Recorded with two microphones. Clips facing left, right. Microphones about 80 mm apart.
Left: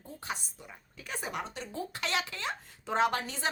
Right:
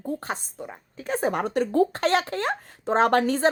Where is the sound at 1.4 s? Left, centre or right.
Right.